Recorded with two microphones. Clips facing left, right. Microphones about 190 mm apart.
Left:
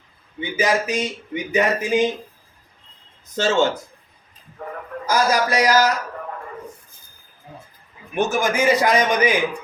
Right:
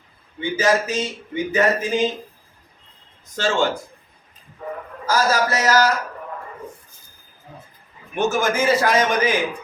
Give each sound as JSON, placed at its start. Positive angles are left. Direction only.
{"t": 0.3, "sound": "speech", "side_deg": 15}
{"t": 3.3, "sound": "speech", "side_deg": 20}
{"t": 5.0, "sound": "speech", "side_deg": 15}
{"t": 8.1, "sound": "speech", "side_deg": 15}